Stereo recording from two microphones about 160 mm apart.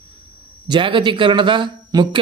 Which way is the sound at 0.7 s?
30° right (ahead or behind).